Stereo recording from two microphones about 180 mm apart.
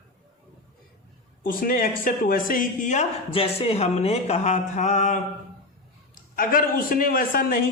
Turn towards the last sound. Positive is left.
turn(degrees=50)  # may be behind; listen again after turning